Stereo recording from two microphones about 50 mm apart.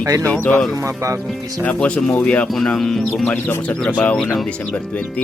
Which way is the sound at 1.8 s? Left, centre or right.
Left.